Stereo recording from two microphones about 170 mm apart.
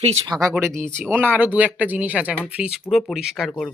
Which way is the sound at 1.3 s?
10° right (ahead or behind).